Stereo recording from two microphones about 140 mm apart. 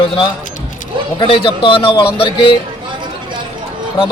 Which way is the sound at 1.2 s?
40° left (ahead or behind).